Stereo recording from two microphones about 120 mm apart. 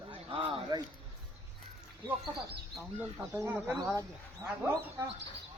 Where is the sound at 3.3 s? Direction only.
20° right (ahead or behind).